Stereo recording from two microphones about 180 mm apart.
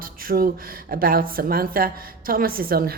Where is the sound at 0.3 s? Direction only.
55° right (ahead or behind).